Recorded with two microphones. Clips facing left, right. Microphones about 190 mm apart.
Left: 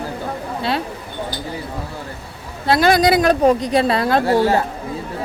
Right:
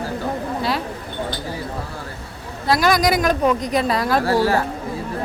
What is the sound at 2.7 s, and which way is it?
A woman's voice, 30° left (ahead or behind).